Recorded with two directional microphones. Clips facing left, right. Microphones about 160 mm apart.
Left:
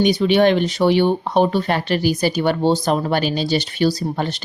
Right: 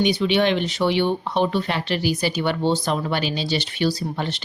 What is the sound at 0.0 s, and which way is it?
Speech, 45° left (ahead or behind).